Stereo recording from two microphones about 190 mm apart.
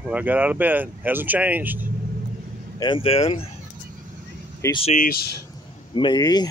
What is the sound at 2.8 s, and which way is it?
Speech, 25° left (ahead or behind).